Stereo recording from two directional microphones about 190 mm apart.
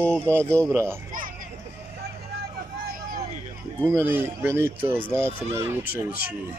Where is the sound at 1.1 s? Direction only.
45° right (ahead or behind).